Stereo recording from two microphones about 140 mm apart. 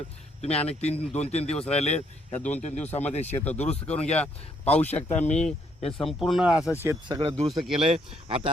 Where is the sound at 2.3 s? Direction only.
10° left (ahead or behind).